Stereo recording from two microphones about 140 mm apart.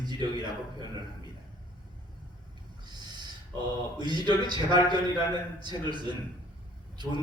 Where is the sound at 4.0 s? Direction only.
30° right (ahead or behind).